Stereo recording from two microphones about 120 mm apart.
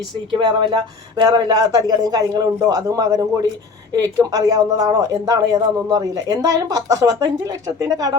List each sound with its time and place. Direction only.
0.3 s speech: 40° right (ahead or behind)